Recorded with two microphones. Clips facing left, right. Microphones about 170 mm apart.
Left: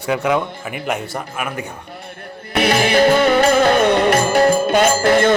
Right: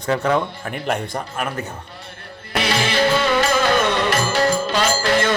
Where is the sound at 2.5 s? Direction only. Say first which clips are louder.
Left 5 dB; 50° left (ahead or behind).